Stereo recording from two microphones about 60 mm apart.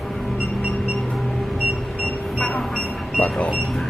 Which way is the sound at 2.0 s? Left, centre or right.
Left.